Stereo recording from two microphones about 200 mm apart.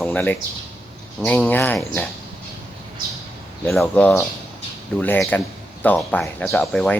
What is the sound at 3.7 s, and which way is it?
Speech, 5° left (ahead or behind).